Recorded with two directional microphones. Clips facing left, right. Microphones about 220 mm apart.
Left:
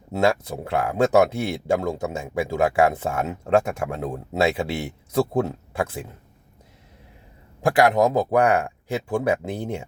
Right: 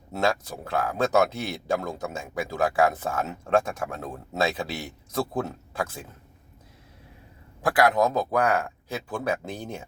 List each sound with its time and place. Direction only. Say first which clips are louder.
0.1 s speech: left 5 dB; 25° left (ahead or behind)
7.6 s speech: left 4 dB; 25° left (ahead or behind)